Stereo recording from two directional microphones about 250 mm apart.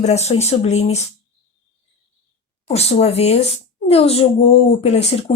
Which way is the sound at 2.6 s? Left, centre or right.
Left.